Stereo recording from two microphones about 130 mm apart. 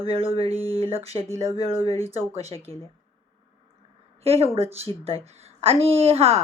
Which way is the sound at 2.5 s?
40° right (ahead or behind).